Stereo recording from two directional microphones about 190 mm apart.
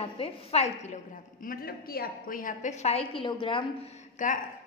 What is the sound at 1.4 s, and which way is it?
A woman's voice, 50° left (ahead or behind).